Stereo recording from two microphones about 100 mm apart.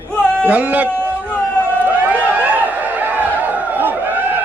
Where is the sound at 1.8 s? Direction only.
15° right (ahead or behind).